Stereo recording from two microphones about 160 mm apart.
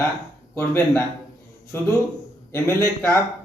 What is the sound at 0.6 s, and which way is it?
Speech, 10° left (ahead or behind).